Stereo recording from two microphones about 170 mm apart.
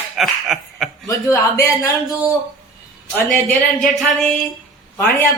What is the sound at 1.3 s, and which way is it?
Speech, 15° left (ahead or behind).